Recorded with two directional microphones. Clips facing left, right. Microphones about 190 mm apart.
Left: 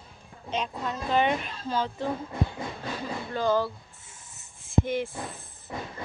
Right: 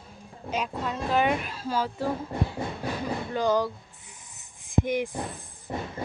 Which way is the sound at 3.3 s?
15° right (ahead or behind).